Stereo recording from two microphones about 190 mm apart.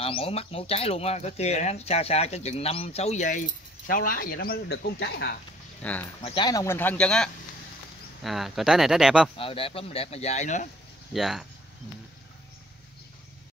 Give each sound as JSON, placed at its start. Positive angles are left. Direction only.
{"t": 0.0, "sound": "speech", "side_deg": 30}
{"t": 5.8, "sound": "speech", "side_deg": 10}
{"t": 6.2, "sound": "speech", "side_deg": 25}
{"t": 9.4, "sound": "speech", "side_deg": 30}
{"t": 11.1, "sound": "speech", "side_deg": 0}